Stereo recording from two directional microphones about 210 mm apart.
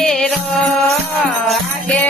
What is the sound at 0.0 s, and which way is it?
Music, centre (ahead or behind).